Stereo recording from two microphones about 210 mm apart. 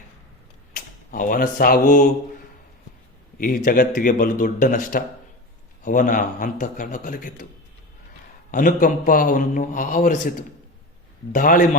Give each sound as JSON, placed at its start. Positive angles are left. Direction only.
{"t": 1.1, "sound": "a man's voice", "side_deg": 40}
{"t": 3.3, "sound": "a man's voice", "side_deg": 45}
{"t": 8.4, "sound": "a man's voice", "side_deg": 40}